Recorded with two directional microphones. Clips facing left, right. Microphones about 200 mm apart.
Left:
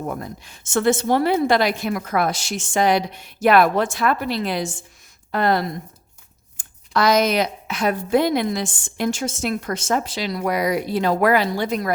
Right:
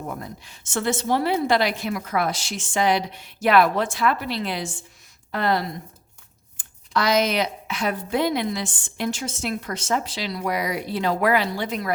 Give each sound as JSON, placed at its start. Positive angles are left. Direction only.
{"t": 0.2, "sound": "a woman's voice", "side_deg": 50}